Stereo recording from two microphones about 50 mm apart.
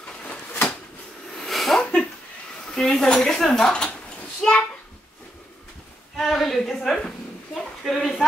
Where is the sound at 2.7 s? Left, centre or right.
Centre.